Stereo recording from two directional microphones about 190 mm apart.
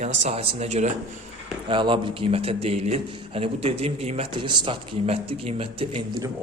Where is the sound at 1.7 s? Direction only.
25° right (ahead or behind).